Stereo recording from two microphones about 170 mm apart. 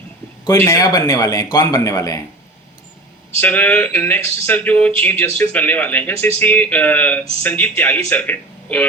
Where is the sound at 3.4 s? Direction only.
10° left (ahead or behind).